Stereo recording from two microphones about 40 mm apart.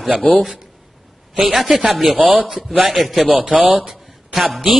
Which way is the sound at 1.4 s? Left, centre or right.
Centre.